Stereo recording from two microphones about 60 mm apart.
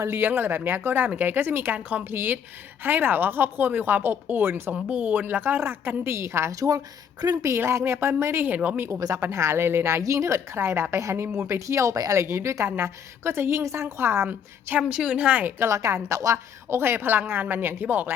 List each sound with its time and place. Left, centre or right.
0.2 s a woman's voice: right
4.7 s a woman's voice: centre; by 6.5 s right
6.5 s speech: right
7.5 s speech: right
8.5 s speech: right
8.9 s speech: right
9.2 s speech: right
12.1 s speech: right
14.8 s a woman's voice: centre
15.4 s a woman's voice: right
15.7 s a woman's voice: right